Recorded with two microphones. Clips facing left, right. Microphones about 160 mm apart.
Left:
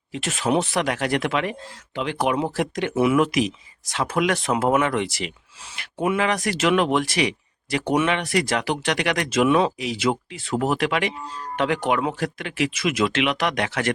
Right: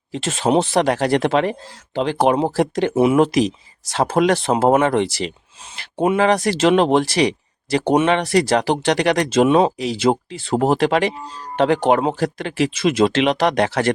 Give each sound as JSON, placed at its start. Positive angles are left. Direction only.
{"t": 0.1, "sound": "speech", "side_deg": -30}